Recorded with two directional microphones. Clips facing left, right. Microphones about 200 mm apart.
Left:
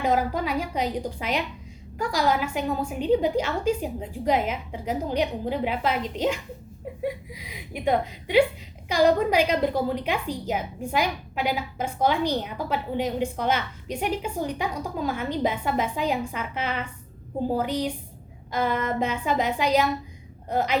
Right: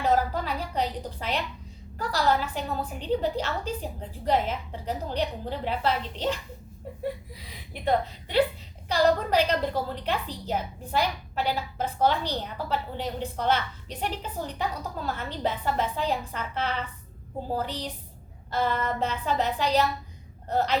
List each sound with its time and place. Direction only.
0.0 s a woman's voice: 10° left (ahead or behind)